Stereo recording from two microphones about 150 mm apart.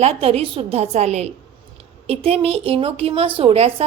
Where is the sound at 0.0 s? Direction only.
45° right (ahead or behind).